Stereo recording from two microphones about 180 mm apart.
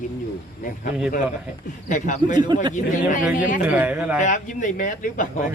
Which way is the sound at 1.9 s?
45° left (ahead or behind).